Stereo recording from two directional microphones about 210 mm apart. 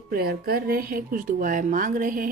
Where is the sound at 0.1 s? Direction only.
45° right (ahead or behind).